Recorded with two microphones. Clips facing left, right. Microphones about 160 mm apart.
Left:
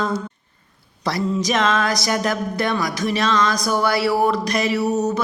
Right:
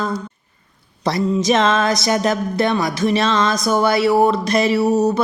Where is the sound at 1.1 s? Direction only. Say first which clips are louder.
Right 4 dB; 20° right (ahead or behind).